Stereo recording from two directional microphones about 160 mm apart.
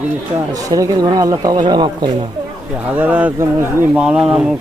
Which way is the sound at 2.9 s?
10° right (ahead or behind).